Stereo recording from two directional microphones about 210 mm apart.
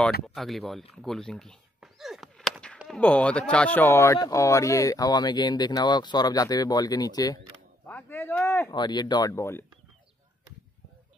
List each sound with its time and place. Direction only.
0.3 s speech: centre (ahead or behind)
0.9 s a sound: centre (ahead or behind)
3.0 s speech: 5° left (ahead or behind)